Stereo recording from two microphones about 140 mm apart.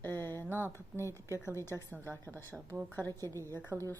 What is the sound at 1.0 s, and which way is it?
Speech, 20° right (ahead or behind).